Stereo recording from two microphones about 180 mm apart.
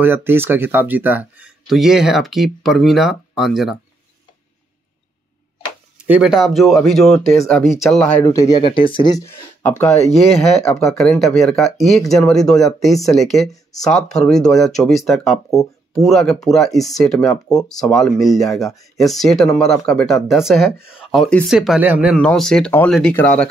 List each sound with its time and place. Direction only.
0.0 s speech: 10° right (ahead or behind)
6.0 s speech: 5° right (ahead or behind)
8.3 s speech: 20° left (ahead or behind)
9.8 s speech: 35° left (ahead or behind)
10.6 s speech: centre (ahead or behind)
22.1 s speech: 5° left (ahead or behind)